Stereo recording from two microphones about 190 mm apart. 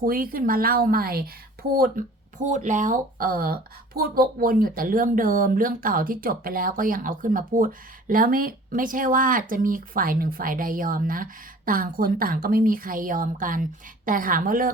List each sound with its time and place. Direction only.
0.0 s speech: 50° right (ahead or behind)